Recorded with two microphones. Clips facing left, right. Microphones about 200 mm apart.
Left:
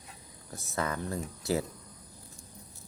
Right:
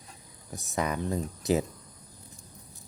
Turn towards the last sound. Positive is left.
turn(degrees=-20)  # may be behind; listen again after turning